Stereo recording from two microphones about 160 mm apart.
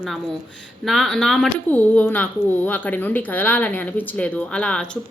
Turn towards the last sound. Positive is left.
turn(degrees=5)  # may be behind; listen again after turning